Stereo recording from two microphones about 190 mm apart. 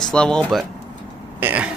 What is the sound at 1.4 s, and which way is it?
Speech, 10° right (ahead or behind).